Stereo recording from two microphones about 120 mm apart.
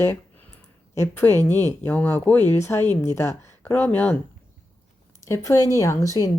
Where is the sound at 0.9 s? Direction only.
20° left (ahead or behind).